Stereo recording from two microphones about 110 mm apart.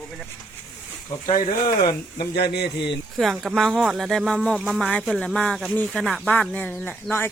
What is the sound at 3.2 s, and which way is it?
Speech, centre (ahead or behind).